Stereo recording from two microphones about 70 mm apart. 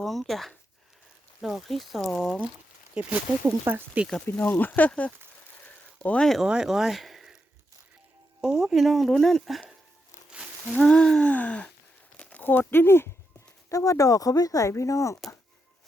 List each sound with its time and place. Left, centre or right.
0.0 s speech: centre
2.9 s speech: centre
3.6 s speech: right
4.3 s speech: left
5.6 s a sound: left
6.4 s speech: centre
8.4 s speech: centre
10.2 s a sound: centre
10.8 s a sound: centre
12.1 s crumpling: centre
13.7 s speech: left
14.7 s speech: left